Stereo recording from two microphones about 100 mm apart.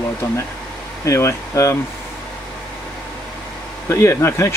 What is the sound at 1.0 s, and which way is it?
Speech, 30° left (ahead or behind).